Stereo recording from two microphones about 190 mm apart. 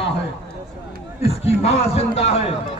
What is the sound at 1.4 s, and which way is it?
A man's voice, 35° left (ahead or behind).